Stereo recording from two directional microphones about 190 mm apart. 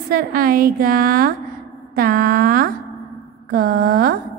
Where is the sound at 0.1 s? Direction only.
50° right (ahead or behind).